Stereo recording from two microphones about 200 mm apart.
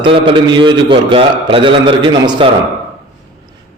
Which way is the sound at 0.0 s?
25° right (ahead or behind).